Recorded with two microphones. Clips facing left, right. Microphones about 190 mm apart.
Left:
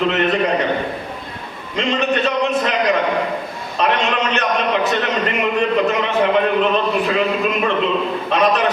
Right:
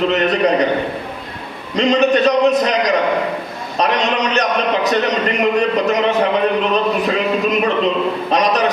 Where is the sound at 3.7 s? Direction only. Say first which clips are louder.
Right 1 dB; 40° right (ahead or behind).